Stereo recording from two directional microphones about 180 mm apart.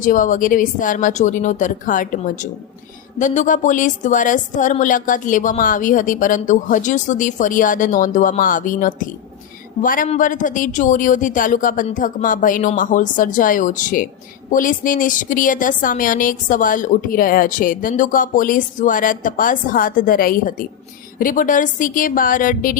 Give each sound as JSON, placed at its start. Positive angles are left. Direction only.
{"t": 0.0, "sound": "a woman's voice", "side_deg": 45}